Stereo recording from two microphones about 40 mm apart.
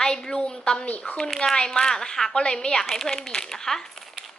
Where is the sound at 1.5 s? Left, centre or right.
Centre.